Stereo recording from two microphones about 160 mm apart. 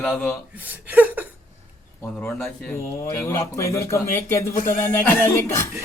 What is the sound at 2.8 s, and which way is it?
A man's voice, 15° left (ahead or behind).